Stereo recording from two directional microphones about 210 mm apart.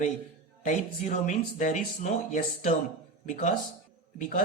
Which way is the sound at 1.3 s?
35° left (ahead or behind).